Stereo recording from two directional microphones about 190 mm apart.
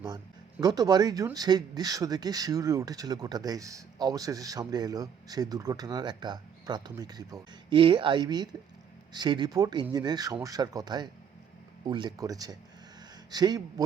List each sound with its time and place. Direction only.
0.6 s speech: 20° right (ahead or behind)